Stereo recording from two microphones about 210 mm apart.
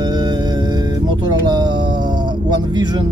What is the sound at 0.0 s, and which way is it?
Music, 20° right (ahead or behind).